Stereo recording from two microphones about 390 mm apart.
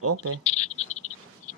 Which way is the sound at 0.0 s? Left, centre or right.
Right.